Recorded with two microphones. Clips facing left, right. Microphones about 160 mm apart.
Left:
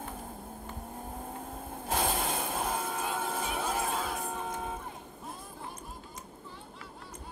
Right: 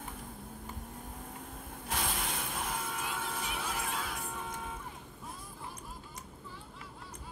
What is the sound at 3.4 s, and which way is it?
Music, 40° left (ahead or behind).